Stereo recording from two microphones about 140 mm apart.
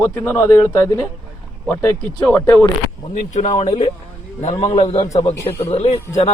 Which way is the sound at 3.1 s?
60° left (ahead or behind).